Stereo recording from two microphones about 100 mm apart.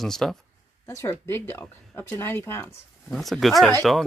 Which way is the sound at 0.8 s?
30° left (ahead or behind).